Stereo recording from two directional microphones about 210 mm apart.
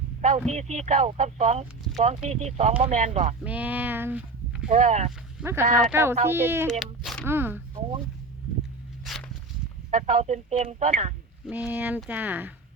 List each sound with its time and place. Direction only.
0.2 s a sound: 35° right (ahead or behind)
0.5 s speech: 35° right (ahead or behind)
3.4 s speech: 5° right (ahead or behind)
4.7 s speech: 35° right (ahead or behind)
5.4 s speech: 10° right (ahead or behind)
6.7 s speech: centre (ahead or behind)
7.3 s speech: 10° right (ahead or behind)
9.1 s walk: centre (ahead or behind)
9.9 s speech: 35° right (ahead or behind)
11.4 s speech: 5° right (ahead or behind)